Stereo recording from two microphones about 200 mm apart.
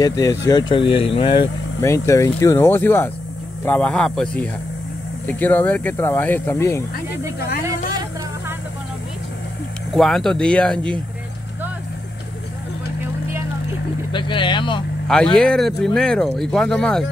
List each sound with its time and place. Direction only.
0.0 s speech: 15° left (ahead or behind)
1.8 s speech: 15° left (ahead or behind)
7.3 s speech: 50° left (ahead or behind)
9.9 s speech: centre (ahead or behind)
14.1 s speech: 25° left (ahead or behind)
15.3 s speech: 5° left (ahead or behind)